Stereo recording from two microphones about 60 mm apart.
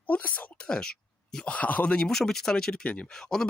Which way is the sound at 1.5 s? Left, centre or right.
Left.